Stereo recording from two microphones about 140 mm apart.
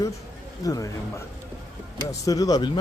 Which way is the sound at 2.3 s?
25° left (ahead or behind).